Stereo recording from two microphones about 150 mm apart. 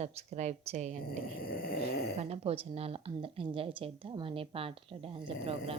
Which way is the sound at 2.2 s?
40° right (ahead or behind).